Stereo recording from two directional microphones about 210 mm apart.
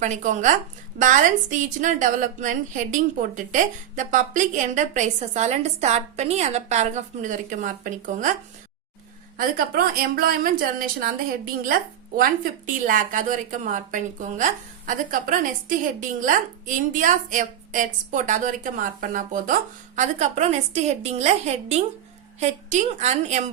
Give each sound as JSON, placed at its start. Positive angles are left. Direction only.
{"t": 0.0, "sound": "a woman's voice", "side_deg": -35}
{"t": 9.4, "sound": "a woman's voice", "side_deg": -45}
{"t": 12.8, "sound": "a woman's voice", "side_deg": -35}